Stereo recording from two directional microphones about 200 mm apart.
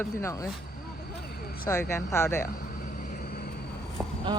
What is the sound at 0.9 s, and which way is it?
Vehicle, 50° left (ahead or behind).